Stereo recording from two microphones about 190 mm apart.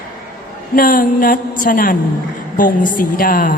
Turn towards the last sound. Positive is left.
turn(degrees=45)  # may be behind; listen again after turning